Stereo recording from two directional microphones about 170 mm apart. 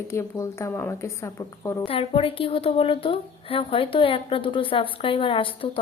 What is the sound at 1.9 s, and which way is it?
Speech, 35° left (ahead or behind).